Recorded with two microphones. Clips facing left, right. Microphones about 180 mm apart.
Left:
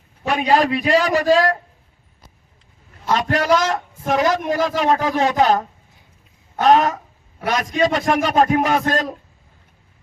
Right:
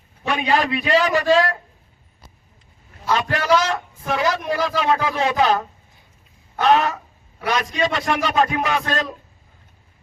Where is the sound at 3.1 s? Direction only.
40° left (ahead or behind).